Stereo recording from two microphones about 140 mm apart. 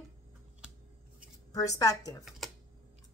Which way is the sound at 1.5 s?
25° left (ahead or behind).